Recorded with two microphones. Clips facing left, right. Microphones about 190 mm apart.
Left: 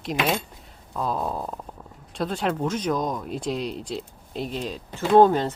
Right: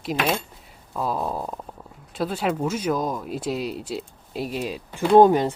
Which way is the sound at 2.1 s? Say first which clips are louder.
Right 1 dB; 5° right (ahead or behind).